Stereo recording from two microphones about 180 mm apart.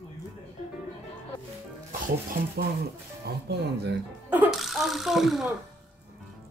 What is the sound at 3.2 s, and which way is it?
Speech, 65° right (ahead or behind).